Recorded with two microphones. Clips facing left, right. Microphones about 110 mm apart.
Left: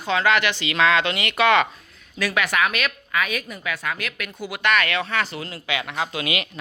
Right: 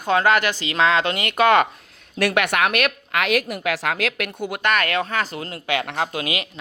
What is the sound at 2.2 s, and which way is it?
A woman's voice, 65° right (ahead or behind).